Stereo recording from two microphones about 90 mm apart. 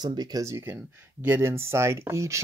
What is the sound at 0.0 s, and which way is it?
Speech, 50° right (ahead or behind).